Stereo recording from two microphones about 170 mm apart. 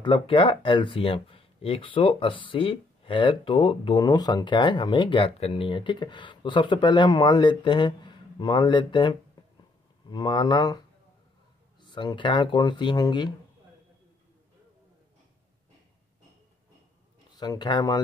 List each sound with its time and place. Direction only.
0.0 s speech: 30° left (ahead or behind)
11.8 s speech: 25° left (ahead or behind)
17.4 s speech: 25° left (ahead or behind)